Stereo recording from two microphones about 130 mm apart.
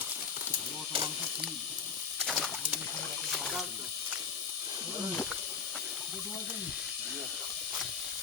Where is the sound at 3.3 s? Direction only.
Centre (ahead or behind).